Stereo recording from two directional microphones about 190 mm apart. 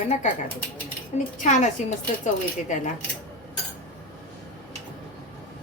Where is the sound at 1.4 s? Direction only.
40° left (ahead or behind).